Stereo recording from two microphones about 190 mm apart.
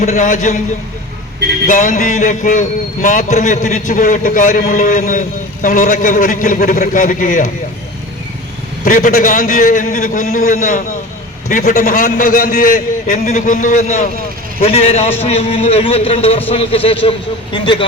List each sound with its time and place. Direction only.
0.0 s a man's voice: 40° left (ahead or behind)
1.6 s a man's voice: 45° left (ahead or behind)
8.8 s a man's voice: 45° left (ahead or behind); by 17.8 s 25° left (ahead or behind)